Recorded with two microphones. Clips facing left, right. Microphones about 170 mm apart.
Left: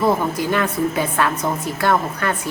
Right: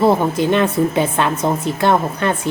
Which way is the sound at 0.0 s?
25° right (ahead or behind).